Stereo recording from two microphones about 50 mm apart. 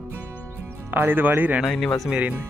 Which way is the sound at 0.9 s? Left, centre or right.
Right.